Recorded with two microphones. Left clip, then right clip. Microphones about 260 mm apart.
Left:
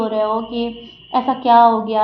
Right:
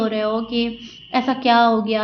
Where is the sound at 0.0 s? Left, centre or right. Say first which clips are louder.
Left 3 dB; right.